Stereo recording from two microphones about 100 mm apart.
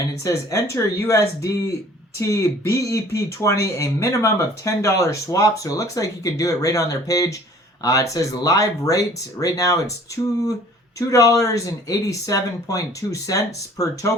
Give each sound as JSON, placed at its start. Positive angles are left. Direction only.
{"t": 0.2, "sound": "speech", "side_deg": 30}
{"t": 10.9, "sound": "speech", "side_deg": 35}